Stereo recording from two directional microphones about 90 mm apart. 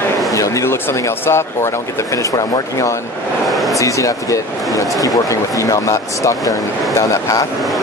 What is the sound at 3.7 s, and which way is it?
Speech, 35° left (ahead or behind).